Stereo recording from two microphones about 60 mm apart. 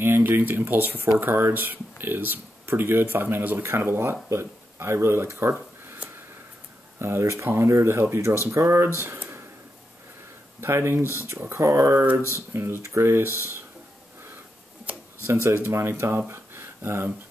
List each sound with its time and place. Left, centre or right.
0.0 s speech: right
7.0 s speech: right
10.6 s speech: right
12.2 s speech: left
12.5 s speech: right
15.4 s speech: right
16.3 s a sound: right